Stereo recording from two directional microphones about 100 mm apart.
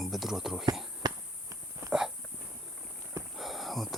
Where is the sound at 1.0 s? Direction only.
35° right (ahead or behind).